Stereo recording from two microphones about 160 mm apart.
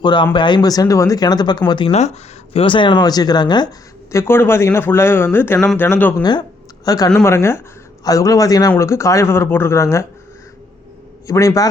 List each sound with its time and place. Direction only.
0.0 s speech: 30° left (ahead or behind)
1.9 s speech: 45° left (ahead or behind); by 3.7 s 25° left (ahead or behind)
4.1 s speech: 15° left (ahead or behind)
6.8 s speech: 25° left (ahead or behind)
11.3 s speech: 20° left (ahead or behind)